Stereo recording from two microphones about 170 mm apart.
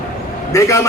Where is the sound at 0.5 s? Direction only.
15° left (ahead or behind).